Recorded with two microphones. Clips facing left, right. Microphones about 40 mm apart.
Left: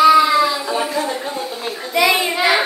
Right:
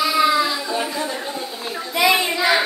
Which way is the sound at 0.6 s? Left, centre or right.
Left.